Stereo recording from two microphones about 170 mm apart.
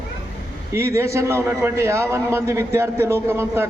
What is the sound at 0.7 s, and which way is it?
A man's voice, 15° right (ahead or behind).